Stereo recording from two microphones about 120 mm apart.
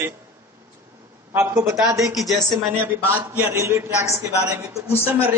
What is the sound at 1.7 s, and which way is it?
Speech, 5° right (ahead or behind).